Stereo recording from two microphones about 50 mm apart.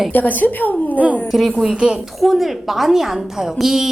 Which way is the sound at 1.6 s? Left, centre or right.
Centre.